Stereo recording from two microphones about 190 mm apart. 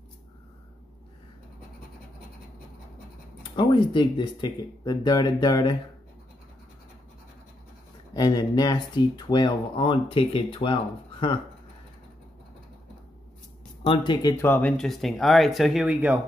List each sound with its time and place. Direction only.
3.5 s speech: 25° left (ahead or behind)
8.1 s speech: 20° left (ahead or behind)
13.8 s speech: 25° left (ahead or behind); by 16.2 s 5° right (ahead or behind)